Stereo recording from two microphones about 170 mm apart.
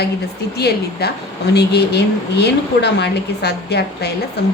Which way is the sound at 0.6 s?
70° left (ahead or behind).